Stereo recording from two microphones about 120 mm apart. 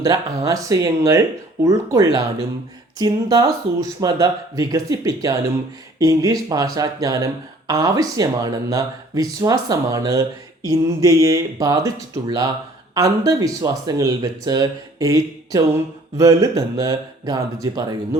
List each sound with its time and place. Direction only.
0.0 s speech: 30° right (ahead or behind)